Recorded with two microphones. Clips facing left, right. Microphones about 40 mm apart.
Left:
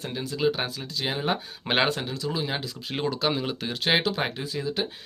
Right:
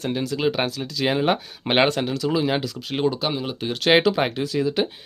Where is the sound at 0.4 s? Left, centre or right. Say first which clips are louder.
Even; right.